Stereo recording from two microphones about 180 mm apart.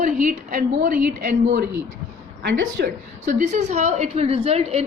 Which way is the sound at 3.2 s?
40° right (ahead or behind).